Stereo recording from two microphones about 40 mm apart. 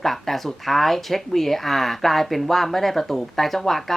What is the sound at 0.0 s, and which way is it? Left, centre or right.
Speech, centre.